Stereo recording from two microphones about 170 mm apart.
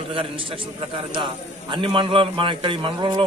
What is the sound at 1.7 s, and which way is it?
A man's voice, 30° right (ahead or behind).